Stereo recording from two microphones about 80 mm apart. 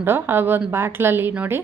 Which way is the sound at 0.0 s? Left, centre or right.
Right.